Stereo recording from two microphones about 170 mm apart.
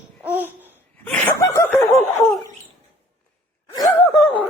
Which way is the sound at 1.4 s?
20° left (ahead or behind).